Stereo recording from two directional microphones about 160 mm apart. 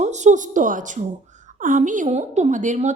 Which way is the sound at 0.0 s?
45° right (ahead or behind).